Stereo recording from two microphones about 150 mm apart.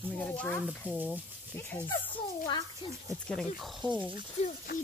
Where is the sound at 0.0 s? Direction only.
10° left (ahead or behind).